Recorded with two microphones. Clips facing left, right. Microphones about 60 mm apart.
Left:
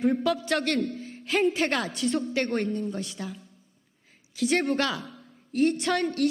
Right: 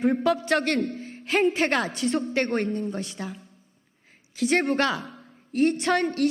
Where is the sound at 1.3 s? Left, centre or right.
Right.